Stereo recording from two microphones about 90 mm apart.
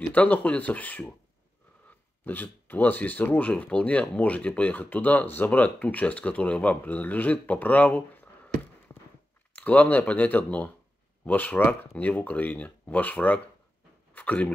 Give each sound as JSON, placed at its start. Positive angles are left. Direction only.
{"t": 0.1, "sound": "speech", "side_deg": 15}
{"t": 2.2, "sound": "speech", "side_deg": 20}
{"t": 9.5, "sound": "speech", "side_deg": 15}